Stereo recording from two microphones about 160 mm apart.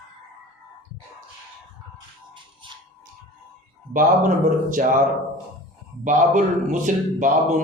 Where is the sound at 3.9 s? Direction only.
55° right (ahead or behind).